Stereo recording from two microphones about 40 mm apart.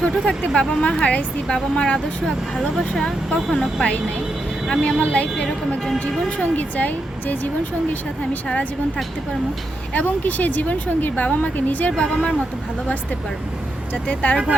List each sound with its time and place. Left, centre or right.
0.0 s speech: left
5.1 s speech: left
9.9 s speech: left
11.9 s speech: left
13.9 s speech: left